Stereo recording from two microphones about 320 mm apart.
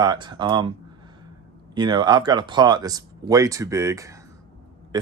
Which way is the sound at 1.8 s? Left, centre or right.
Centre.